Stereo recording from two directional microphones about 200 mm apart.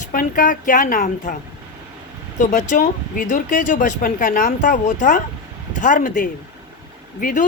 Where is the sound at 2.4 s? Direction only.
40° left (ahead or behind).